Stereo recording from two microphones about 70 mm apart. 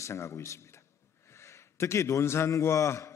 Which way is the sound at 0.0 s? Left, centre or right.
Left.